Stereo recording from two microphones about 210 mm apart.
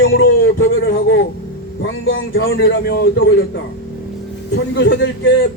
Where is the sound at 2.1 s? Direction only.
65° left (ahead or behind).